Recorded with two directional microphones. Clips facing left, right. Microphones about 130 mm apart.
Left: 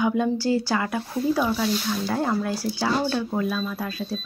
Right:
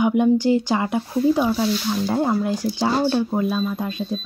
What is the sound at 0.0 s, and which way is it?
Speech, 20° right (ahead or behind).